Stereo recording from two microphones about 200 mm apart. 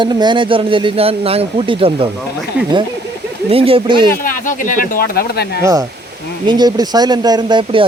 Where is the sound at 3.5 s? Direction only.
30° right (ahead or behind).